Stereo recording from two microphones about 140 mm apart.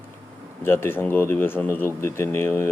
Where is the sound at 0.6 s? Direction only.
15° left (ahead or behind).